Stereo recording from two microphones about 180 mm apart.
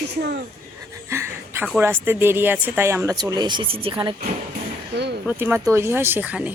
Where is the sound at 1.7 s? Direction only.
10° right (ahead or behind).